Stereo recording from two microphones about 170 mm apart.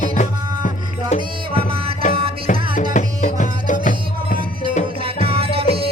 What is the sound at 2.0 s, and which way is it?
Music, 45° left (ahead or behind).